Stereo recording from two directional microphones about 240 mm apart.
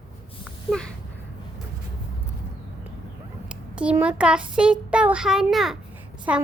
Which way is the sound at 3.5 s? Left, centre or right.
Centre.